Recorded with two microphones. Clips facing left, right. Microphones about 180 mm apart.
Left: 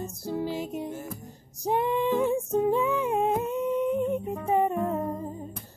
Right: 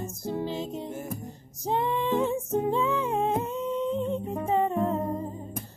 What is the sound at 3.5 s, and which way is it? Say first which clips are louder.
Humming: left 2 dB; 15° left (ahead or behind).